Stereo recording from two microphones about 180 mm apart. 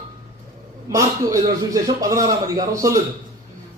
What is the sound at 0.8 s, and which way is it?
A man's voice, 20° right (ahead or behind).